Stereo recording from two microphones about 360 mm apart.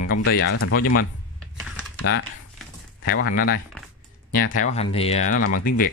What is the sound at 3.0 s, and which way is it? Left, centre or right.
Speech, left.